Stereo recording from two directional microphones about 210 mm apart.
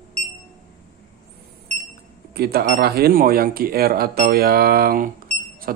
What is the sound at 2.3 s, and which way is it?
Speech, 50° right (ahead or behind).